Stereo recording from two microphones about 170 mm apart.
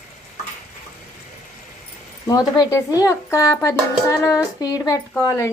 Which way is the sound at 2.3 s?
20° left (ahead or behind).